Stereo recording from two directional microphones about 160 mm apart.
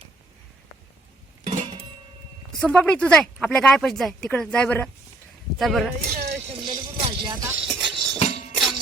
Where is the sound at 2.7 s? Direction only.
5° left (ahead or behind).